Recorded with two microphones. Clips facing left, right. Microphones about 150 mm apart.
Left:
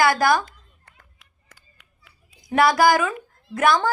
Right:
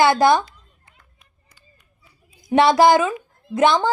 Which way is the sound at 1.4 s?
85° left.